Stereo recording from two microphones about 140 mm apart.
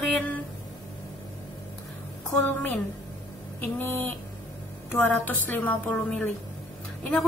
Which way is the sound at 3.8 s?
15° left (ahead or behind).